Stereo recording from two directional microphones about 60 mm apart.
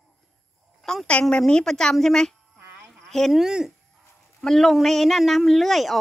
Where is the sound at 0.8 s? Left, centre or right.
Centre.